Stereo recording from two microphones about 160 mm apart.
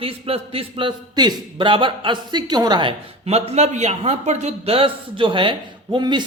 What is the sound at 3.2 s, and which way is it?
A man's voice, 40° right (ahead or behind).